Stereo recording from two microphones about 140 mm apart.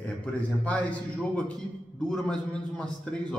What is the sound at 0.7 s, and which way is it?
Speech, 10° left (ahead or behind).